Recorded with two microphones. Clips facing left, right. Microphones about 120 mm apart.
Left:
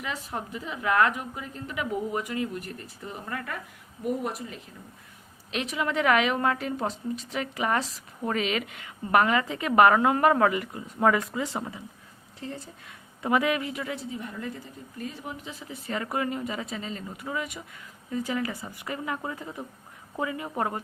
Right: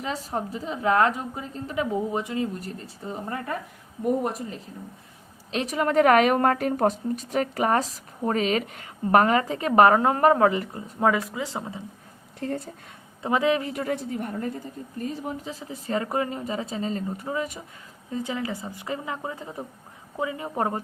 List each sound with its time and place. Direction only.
0.0 s a woman's voice: 35° right (ahead or behind)
4.0 s a woman's voice: 40° right (ahead or behind)
11.0 s speech: 15° right (ahead or behind)
12.4 s speech: 50° right (ahead or behind)
13.2 s a woman's voice: 25° right (ahead or behind)
18.1 s speech: 20° right (ahead or behind)